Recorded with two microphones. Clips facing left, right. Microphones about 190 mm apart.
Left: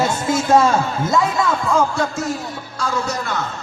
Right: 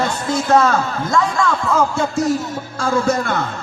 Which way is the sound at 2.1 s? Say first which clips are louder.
Right 6 dB; 40° right (ahead or behind).